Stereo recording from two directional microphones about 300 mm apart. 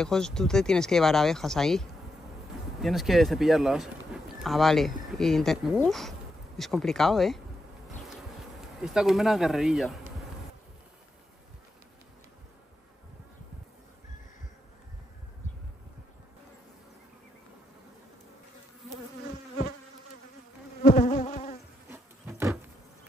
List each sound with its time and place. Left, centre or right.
0.0 s speech: centre
20.8 s insect: left
21.8 s insect: centre